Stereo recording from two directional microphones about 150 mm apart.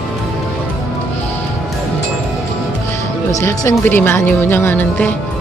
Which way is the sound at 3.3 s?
20° left (ahead or behind).